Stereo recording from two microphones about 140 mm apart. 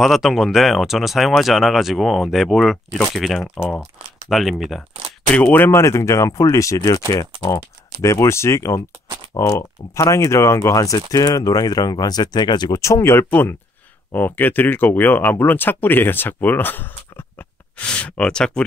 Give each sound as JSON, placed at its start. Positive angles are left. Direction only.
{"t": 0.0, "sound": "speech", "side_deg": 0}
{"t": 5.3, "sound": "speech", "side_deg": 10}